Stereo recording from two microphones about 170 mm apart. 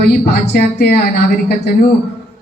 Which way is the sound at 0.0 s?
65° left (ahead or behind).